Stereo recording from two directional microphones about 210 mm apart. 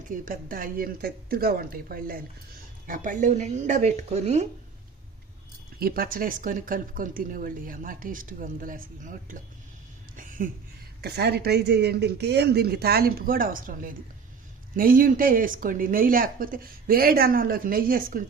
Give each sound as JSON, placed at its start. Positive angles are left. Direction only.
{"t": 0.1, "sound": "speech", "side_deg": -40}
{"t": 5.8, "sound": "speech", "side_deg": -45}
{"t": 10.2, "sound": "a sound", "side_deg": -40}
{"t": 11.0, "sound": "speech", "side_deg": -50}